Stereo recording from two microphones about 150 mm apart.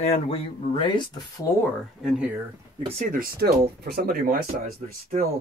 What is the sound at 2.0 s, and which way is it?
Speech, 5° right (ahead or behind).